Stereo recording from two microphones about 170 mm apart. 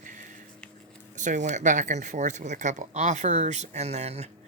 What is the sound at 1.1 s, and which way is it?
Speech, 45° right (ahead or behind).